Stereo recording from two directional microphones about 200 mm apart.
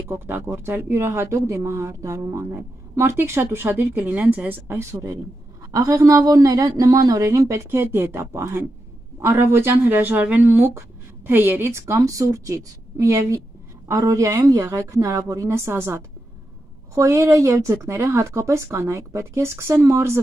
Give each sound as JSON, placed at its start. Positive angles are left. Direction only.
{"t": 0.1, "sound": "speech", "side_deg": -10}